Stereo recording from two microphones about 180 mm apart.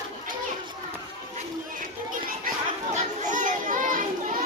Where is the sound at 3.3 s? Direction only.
45° right (ahead or behind).